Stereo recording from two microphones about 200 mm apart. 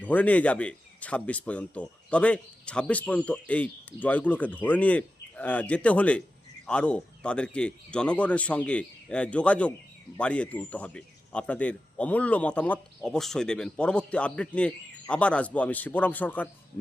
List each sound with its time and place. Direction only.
0.0 s speech: 5° left (ahead or behind)